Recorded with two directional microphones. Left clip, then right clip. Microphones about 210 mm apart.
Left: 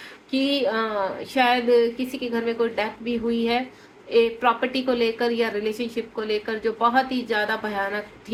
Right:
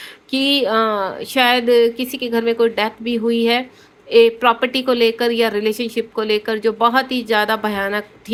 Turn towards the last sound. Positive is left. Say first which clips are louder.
# right 6 dB
turn(degrees=-50)  # may be behind; listen again after turning